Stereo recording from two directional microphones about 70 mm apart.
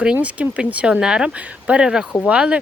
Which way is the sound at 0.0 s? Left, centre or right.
Centre.